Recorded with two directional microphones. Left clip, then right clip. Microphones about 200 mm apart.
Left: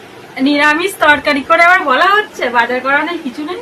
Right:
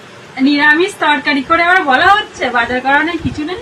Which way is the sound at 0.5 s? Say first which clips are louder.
Right 1 dB; 45° left (ahead or behind).